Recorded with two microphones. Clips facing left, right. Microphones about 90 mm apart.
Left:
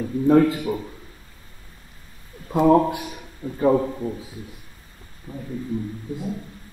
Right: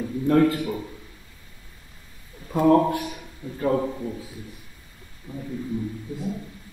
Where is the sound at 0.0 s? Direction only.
10° left (ahead or behind).